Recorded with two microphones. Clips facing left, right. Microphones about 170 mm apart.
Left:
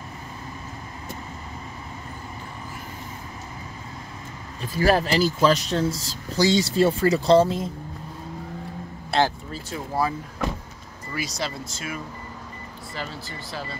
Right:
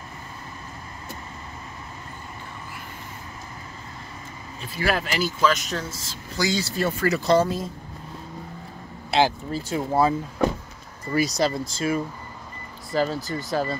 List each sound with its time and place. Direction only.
4.7 s speech: 35° left (ahead or behind)
9.5 s speech: 25° right (ahead or behind)
11.1 s speech: 40° right (ahead or behind)